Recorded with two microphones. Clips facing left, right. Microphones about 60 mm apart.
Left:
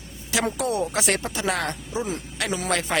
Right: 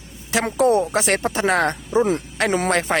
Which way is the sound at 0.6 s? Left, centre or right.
Right.